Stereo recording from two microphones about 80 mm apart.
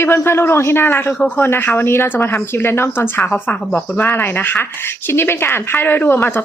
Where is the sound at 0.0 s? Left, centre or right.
Left.